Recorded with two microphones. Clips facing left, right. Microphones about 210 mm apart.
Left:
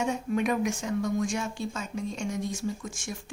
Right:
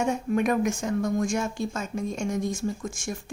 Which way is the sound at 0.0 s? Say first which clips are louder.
Right 3 dB; 50° right (ahead or behind).